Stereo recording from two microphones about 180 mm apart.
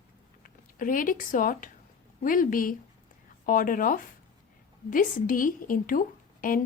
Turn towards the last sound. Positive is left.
turn(degrees=50)  # may be behind; listen again after turning